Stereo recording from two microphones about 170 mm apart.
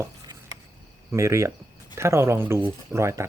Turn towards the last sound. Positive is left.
turn(degrees=-15)  # may be behind; listen again after turning